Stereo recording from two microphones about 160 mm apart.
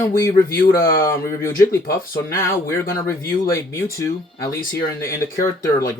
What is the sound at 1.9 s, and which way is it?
Speech, 15° left (ahead or behind).